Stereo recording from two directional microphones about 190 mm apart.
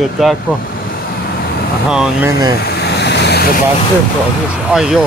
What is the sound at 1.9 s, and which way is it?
Speech, 5° right (ahead or behind).